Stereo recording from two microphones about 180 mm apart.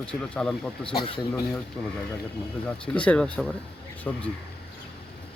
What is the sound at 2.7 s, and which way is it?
Speech, 5° left (ahead or behind).